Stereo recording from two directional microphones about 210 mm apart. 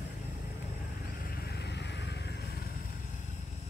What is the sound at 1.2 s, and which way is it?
Vehicle, 45° left (ahead or behind).